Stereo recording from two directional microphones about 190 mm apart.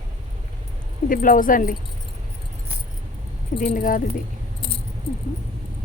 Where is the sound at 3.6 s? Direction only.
45° left (ahead or behind).